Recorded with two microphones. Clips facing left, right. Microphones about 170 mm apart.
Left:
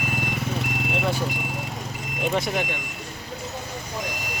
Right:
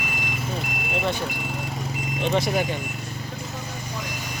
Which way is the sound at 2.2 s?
5° left (ahead or behind).